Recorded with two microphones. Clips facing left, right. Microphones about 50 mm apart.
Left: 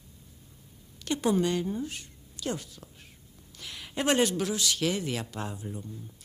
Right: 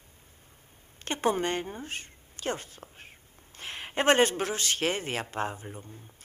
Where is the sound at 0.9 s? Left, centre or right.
Right.